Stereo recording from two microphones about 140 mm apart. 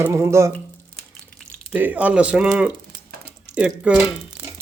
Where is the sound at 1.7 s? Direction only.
10° right (ahead or behind).